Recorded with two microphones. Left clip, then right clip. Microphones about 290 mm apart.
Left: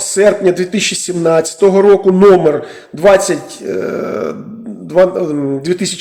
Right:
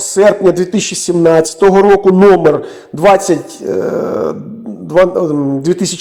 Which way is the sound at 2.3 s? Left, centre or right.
Centre.